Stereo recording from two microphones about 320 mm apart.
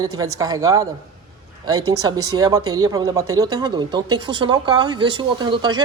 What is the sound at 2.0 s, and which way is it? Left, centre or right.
Speech, centre.